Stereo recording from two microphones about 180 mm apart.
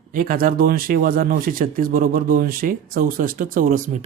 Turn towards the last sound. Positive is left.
turn(degrees=-40)  # may be behind; listen again after turning